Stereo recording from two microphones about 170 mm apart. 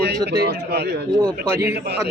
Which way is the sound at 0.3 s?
70° right (ahead or behind).